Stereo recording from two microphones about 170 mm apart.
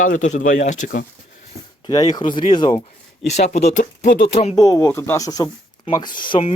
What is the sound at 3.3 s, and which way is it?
Speech, 40° left (ahead or behind).